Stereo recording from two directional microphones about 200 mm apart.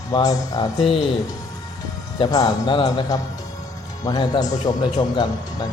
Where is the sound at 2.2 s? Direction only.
20° left (ahead or behind).